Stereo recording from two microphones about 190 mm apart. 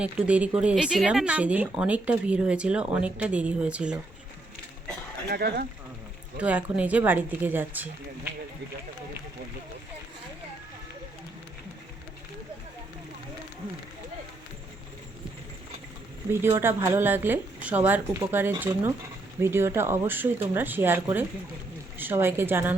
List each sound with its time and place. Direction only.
0.0 s speech: 5° right (ahead or behind)
5.3 s speech: 55° right (ahead or behind)
6.4 s speech: 5° right (ahead or behind)
16.3 s speech: 15° right (ahead or behind)